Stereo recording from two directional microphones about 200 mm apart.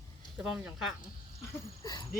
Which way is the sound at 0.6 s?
Centre (ahead or behind).